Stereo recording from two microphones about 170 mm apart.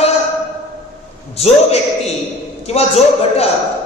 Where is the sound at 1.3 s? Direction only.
40° left (ahead or behind).